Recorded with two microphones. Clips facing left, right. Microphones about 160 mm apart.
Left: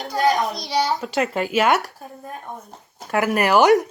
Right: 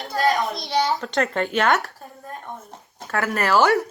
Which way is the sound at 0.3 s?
Centre (ahead or behind).